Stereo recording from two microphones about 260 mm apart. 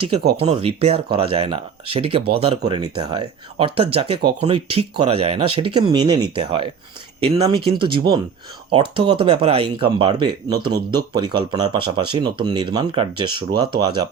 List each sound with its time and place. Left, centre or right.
0.4 s speech: right